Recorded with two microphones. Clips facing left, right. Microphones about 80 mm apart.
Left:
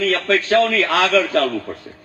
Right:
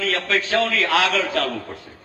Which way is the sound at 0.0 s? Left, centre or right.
Left.